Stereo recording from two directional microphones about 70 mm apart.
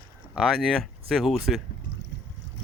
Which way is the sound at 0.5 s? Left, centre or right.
Centre.